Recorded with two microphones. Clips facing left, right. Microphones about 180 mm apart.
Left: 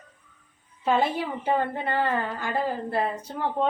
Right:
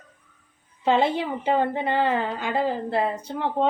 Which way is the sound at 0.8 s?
25° right (ahead or behind).